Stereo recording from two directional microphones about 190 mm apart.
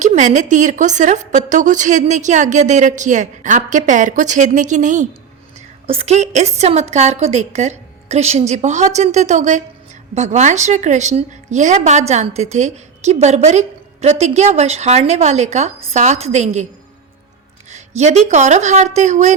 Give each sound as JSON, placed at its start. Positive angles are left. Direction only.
{"t": 0.0, "sound": "a woman's voice", "side_deg": -40}
{"t": 17.7, "sound": "a woman's voice", "side_deg": -35}